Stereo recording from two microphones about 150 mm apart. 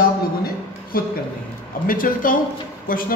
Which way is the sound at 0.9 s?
75° left (ahead or behind).